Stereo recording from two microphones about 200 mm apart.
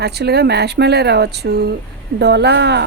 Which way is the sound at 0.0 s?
55° right (ahead or behind).